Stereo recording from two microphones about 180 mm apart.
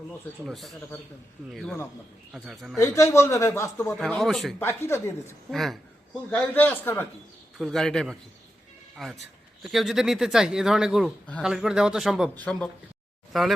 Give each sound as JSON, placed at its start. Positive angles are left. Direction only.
{"t": 0.4, "sound": "a man's voice", "side_deg": 0}
{"t": 2.7, "sound": "a man's voice", "side_deg": 15}
{"t": 3.9, "sound": "a man's voice", "side_deg": 0}
{"t": 4.6, "sound": "a man's voice", "side_deg": 15}
{"t": 5.5, "sound": "a man's voice", "side_deg": 0}